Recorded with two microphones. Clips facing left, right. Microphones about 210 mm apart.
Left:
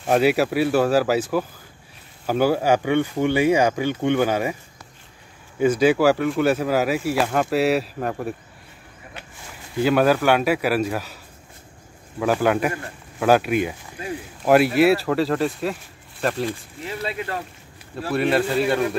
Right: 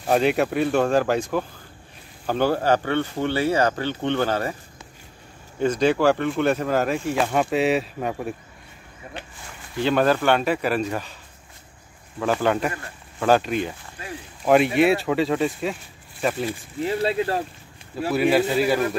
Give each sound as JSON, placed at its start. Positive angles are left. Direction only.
{"t": 0.0, "sound": "speech", "side_deg": 5}
{"t": 5.6, "sound": "speech", "side_deg": 10}
{"t": 9.8, "sound": "speech", "side_deg": 10}
{"t": 12.2, "sound": "speech", "side_deg": 10}
{"t": 16.8, "sound": "speech", "side_deg": -35}
{"t": 18.1, "sound": "speech", "side_deg": -5}